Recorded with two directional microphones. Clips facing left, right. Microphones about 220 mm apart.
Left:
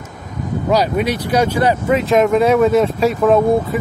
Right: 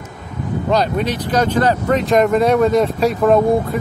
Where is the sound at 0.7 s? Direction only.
10° left (ahead or behind).